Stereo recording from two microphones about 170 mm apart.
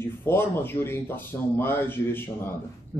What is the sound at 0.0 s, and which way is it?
Speech, 15° left (ahead or behind).